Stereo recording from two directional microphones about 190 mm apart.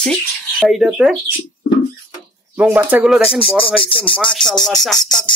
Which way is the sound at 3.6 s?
25° left (ahead or behind).